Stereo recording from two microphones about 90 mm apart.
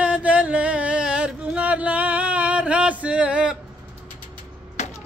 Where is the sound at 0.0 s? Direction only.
15° right (ahead or behind).